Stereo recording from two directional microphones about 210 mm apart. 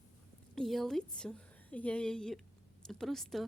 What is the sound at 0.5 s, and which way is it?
A woman's voice, centre (ahead or behind).